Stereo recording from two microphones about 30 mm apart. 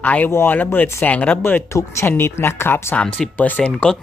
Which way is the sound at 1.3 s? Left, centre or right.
Left.